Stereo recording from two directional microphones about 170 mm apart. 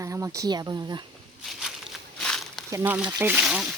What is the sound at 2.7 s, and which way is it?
Speech, 10° right (ahead or behind).